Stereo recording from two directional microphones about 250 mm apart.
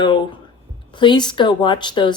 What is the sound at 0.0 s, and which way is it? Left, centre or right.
Speech, centre.